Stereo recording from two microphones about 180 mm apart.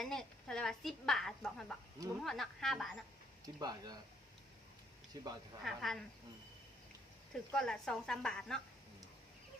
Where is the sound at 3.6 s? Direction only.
20° right (ahead or behind).